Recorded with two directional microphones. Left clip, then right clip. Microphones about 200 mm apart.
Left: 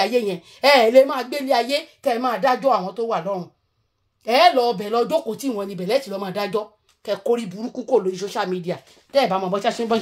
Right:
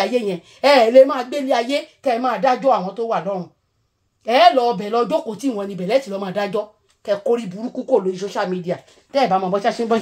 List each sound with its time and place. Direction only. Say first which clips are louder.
0.0 s a woman's voice: even; 50° left (ahead or behind)